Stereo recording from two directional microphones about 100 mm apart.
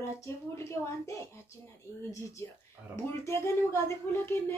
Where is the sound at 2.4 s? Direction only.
30° left (ahead or behind).